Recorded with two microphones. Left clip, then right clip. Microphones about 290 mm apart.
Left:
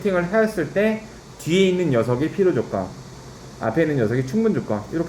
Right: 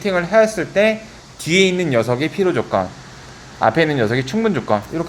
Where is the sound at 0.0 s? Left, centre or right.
Right.